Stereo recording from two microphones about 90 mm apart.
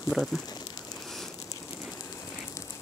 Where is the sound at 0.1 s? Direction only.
Centre (ahead or behind).